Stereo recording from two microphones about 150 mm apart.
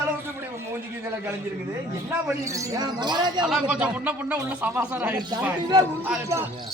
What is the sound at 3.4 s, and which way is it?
A man's voice, 5° right (ahead or behind).